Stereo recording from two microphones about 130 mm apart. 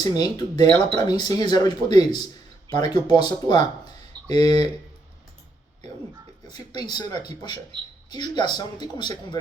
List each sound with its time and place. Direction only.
0.0 s speech: 30° left (ahead or behind)
6.5 s speech: 30° left (ahead or behind)